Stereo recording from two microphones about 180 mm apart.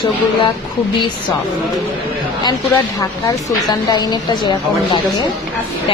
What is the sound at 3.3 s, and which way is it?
A woman's voice, 20° left (ahead or behind).